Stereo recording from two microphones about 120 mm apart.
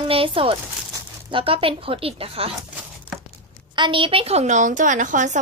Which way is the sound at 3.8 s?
45° right (ahead or behind).